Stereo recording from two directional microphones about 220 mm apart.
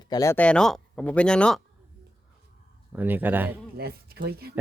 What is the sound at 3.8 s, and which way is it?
Speech, 45° right (ahead or behind).